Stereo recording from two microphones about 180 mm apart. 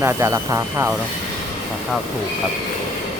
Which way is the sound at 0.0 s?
15° right (ahead or behind).